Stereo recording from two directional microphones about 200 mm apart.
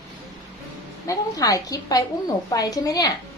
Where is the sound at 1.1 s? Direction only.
15° left (ahead or behind).